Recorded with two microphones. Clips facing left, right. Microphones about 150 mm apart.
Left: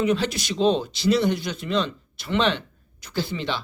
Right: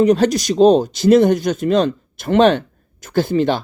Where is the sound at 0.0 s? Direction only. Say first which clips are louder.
Right 9 dB; 40° right (ahead or behind).